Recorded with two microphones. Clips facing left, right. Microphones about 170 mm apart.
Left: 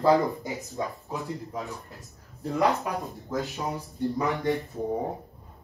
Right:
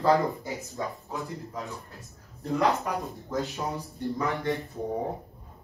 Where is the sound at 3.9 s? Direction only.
20° left (ahead or behind).